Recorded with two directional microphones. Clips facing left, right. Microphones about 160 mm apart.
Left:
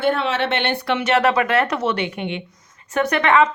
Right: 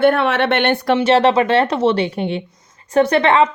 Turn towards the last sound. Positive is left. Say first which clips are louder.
# right 3 dB
turn(degrees=-30)  # may be behind; listen again after turning